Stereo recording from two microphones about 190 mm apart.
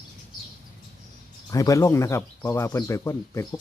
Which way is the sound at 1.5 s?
15° left (ahead or behind).